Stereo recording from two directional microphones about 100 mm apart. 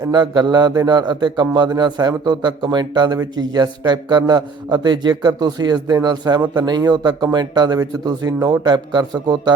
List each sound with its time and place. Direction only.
0.0 s a man's voice: 45° right (ahead or behind)